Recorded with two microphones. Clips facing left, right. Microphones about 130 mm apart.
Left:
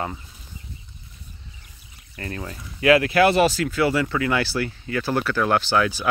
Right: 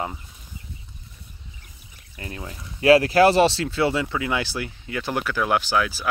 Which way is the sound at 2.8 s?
35° right (ahead or behind).